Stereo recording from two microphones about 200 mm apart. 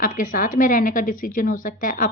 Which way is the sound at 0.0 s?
45° left (ahead or behind).